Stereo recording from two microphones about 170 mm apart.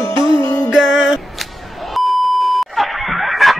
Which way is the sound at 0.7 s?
Centre (ahead or behind).